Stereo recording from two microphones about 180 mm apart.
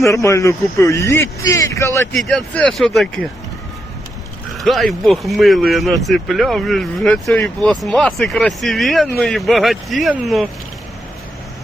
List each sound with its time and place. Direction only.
0.0 s speech: 15° left (ahead or behind)
2.1 s speech: centre (ahead or behind)
4.5 s speech: centre (ahead or behind)